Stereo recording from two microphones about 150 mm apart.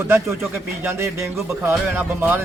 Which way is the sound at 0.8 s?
15° right (ahead or behind).